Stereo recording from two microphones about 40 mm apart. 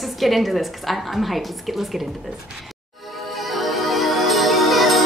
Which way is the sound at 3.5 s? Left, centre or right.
Centre.